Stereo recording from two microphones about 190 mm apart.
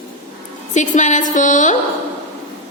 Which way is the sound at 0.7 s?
40° left (ahead or behind).